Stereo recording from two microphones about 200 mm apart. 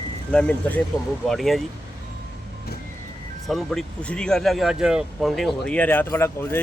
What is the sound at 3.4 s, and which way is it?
Speech, centre (ahead or behind).